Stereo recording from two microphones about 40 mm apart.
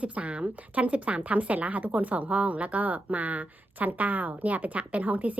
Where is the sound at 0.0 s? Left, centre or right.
Right.